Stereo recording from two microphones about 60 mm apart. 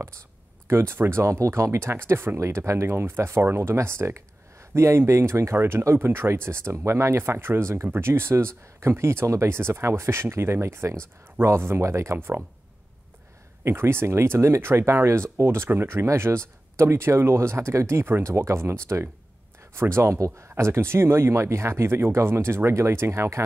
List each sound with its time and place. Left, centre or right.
0.7 s speech: right
1.2 s speech: right
13.7 s speech: right